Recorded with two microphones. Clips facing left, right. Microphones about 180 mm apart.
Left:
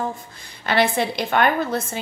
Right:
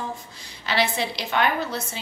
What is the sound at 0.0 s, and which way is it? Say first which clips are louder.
A woman's voice: left 5 dB; 55° left (ahead or behind).